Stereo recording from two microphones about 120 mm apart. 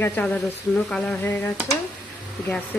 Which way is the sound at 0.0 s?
15° left (ahead or behind).